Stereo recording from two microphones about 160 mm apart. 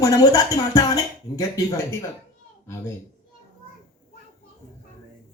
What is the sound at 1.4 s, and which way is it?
Speech, 20° left (ahead or behind).